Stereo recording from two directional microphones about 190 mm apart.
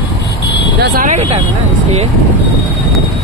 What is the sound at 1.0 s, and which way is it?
Speech, 35° right (ahead or behind).